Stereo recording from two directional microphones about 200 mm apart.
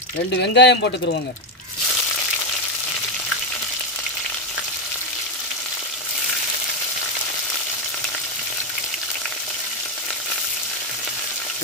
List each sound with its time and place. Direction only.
0.4 s speech: 60° left (ahead or behind)